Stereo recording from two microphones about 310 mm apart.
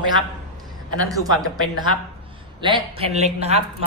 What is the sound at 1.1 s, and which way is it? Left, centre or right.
A man's voice, centre.